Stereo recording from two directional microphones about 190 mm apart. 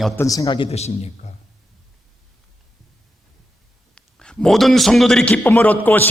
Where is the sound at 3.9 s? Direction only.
5° left (ahead or behind).